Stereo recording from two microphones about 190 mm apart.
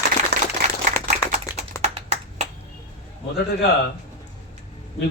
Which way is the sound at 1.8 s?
35° right (ahead or behind).